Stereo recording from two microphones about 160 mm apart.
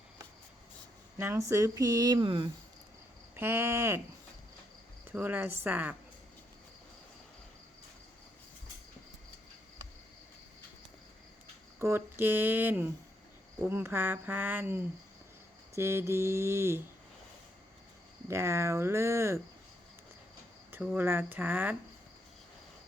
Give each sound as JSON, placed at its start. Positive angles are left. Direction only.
{"t": 1.2, "sound": "speech", "side_deg": -15}
{"t": 3.3, "sound": "speech", "side_deg": -15}
{"t": 5.1, "sound": "speech", "side_deg": -10}
{"t": 11.8, "sound": "speech", "side_deg": -15}
{"t": 18.3, "sound": "speech", "side_deg": -15}
{"t": 20.7, "sound": "speech", "side_deg": -15}